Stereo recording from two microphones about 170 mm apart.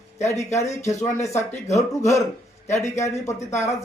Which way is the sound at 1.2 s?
15° left (ahead or behind).